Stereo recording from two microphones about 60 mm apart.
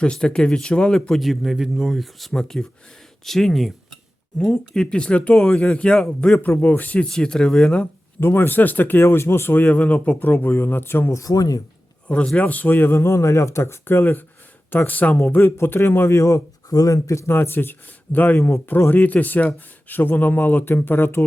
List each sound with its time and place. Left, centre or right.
0.0 s speech: centre
6.6 s speech: left
7.0 s speech: centre
8.2 s speech: left
11.1 s speech: left
12.0 s speech: centre
15.4 s speech: left
16.1 s speech: left
17.3 s speech: left